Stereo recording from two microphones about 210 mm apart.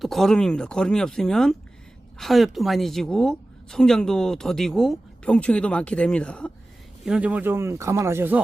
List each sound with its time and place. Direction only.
0.0 s a woman's voice: centre (ahead or behind)